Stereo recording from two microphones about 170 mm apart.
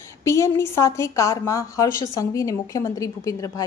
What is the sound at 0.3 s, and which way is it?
A woman's voice, 15° left (ahead or behind).